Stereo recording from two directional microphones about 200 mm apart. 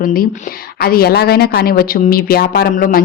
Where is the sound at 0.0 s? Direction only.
45° left (ahead or behind).